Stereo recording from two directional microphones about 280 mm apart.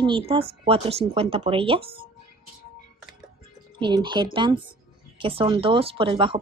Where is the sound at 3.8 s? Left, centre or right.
Centre.